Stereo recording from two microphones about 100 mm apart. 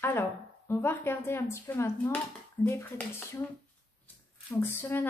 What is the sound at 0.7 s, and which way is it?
A woman's voice, 25° left (ahead or behind).